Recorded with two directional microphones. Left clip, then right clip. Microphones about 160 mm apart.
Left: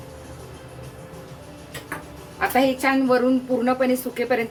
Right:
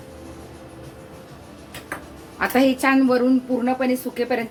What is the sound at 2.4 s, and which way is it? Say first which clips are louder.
Speech: right 1 dB; 45° right (ahead or behind).